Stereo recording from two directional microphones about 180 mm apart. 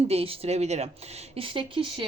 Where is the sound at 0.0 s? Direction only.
35° right (ahead or behind).